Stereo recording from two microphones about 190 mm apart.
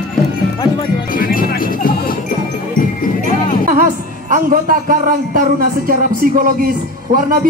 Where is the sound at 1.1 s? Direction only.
50° left (ahead or behind).